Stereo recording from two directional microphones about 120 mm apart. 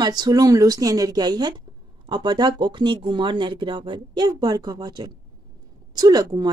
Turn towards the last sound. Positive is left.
turn(degrees=-35)  # may be behind; listen again after turning